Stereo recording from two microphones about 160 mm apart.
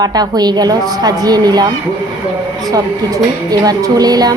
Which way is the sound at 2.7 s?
25° right (ahead or behind).